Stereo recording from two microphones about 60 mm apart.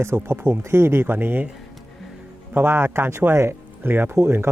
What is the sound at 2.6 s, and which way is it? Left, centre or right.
Speech, right.